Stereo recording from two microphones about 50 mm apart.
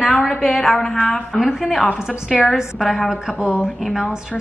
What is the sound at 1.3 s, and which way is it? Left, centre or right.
A woman's voice, centre.